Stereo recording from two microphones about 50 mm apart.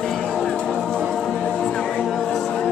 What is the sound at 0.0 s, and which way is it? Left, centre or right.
Music, centre.